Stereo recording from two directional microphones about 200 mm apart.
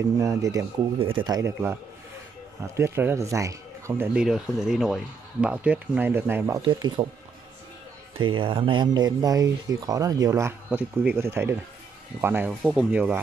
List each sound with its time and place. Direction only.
0.2 s speech: 15° right (ahead or behind)
0.9 s speech: 25° right (ahead or behind)
8.2 s speech: 25° right (ahead or behind); by 13.2 s 10° right (ahead or behind)